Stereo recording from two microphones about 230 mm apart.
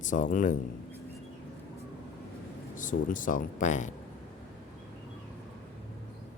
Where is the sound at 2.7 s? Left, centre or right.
Left.